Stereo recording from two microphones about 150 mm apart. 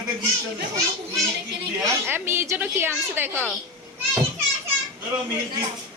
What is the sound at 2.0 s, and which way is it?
A woman's voice, 15° right (ahead or behind).